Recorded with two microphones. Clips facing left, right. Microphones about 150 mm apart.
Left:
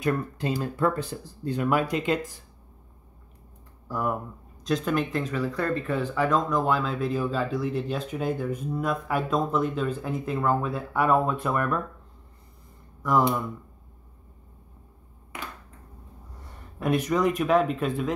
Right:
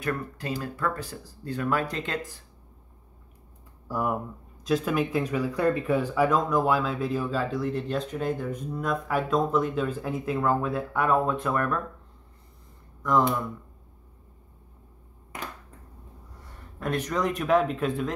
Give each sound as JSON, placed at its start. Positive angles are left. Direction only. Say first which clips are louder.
{"t": 0.0, "sound": "speech", "louder": "left 4 dB", "side_deg": 20}
{"t": 3.9, "sound": "speech", "louder": "even", "side_deg": -10}
{"t": 13.0, "sound": "speech", "louder": "even", "side_deg": 10}
{"t": 16.8, "sound": "speech", "louder": "left 4 dB", "side_deg": 10}